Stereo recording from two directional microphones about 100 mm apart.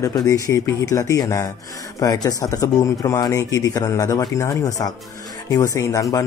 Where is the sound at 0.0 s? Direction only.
35° left (ahead or behind).